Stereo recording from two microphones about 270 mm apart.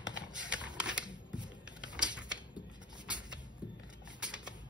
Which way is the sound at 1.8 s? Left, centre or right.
Centre.